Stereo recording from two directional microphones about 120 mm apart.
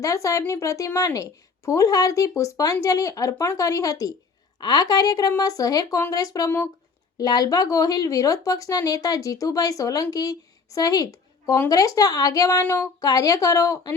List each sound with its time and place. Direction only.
0.0 s a woman's voice: 25° left (ahead or behind)
13.0 s speech: 30° left (ahead or behind)